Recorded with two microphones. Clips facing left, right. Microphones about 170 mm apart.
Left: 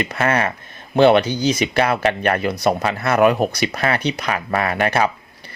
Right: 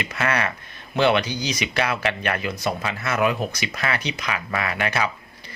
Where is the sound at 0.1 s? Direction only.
45° left (ahead or behind); by 3.6 s 60° left (ahead or behind).